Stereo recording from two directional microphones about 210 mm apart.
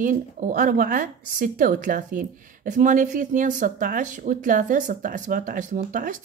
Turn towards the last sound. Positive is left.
turn(degrees=-40)  # may be behind; listen again after turning